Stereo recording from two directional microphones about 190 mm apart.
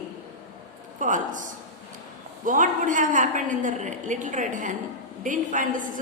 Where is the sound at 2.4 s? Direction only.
45° right (ahead or behind).